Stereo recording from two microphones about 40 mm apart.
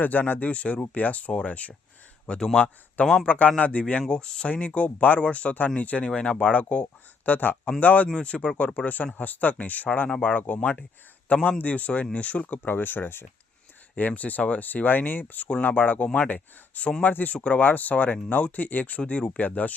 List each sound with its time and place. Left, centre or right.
0.0 s speech: left
2.6 s speech: left
3.2 s speech: left
4.1 s speech: left
6.1 s speech: left
6.5 s speech: left
8.1 s speech: left
12.6 s speech: left
14.1 s speech: left
14.8 s speech: left